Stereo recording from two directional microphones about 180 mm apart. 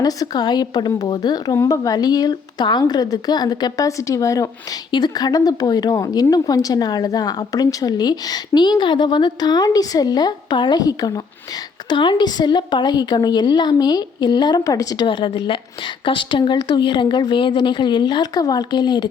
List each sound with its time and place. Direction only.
0.0 s a woman's voice: 20° left (ahead or behind)